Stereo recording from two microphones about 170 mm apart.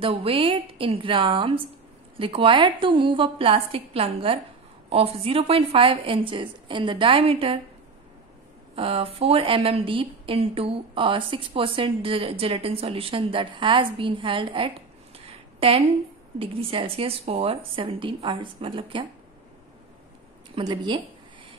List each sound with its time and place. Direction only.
0.0 s a woman's voice: 30° right (ahead or behind)
8.7 s a woman's voice: 35° right (ahead or behind)
15.1 s a sound: 35° right (ahead or behind)
16.3 s a woman's voice: 35° right (ahead or behind)
20.5 s a woman's voice: 25° right (ahead or behind)